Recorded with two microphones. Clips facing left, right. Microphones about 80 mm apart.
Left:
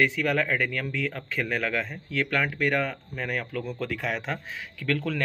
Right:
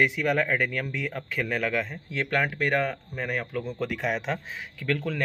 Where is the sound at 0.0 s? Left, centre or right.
Centre.